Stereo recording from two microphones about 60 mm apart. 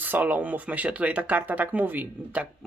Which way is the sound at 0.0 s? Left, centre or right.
Right.